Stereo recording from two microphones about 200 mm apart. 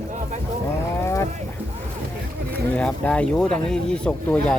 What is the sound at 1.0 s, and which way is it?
Boat, 15° left (ahead or behind).